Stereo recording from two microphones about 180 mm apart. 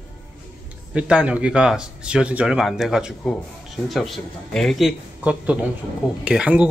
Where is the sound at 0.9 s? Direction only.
5° right (ahead or behind).